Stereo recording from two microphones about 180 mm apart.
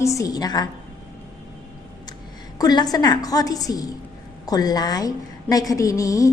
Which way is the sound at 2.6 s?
20° left (ahead or behind).